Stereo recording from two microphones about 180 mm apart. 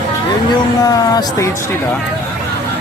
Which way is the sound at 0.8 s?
20° left (ahead or behind).